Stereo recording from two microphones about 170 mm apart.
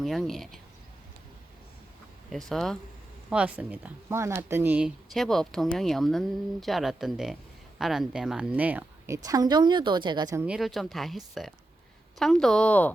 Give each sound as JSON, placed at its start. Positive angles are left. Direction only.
{"t": 0.0, "sound": "speech", "side_deg": 0}
{"t": 2.5, "sound": "a woman's voice", "side_deg": 0}
{"t": 5.1, "sound": "a woman's voice", "side_deg": 0}
{"t": 10.4, "sound": "speech", "side_deg": -5}